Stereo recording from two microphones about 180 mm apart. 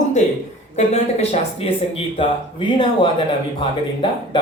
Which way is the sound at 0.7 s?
35° left (ahead or behind).